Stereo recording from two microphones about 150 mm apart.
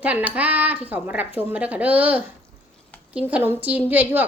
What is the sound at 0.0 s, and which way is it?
A woman's voice, 10° right (ahead or behind).